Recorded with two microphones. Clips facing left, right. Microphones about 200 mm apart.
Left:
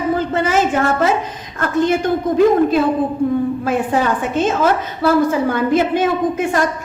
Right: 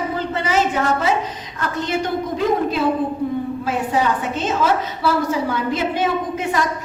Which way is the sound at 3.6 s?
50° left (ahead or behind).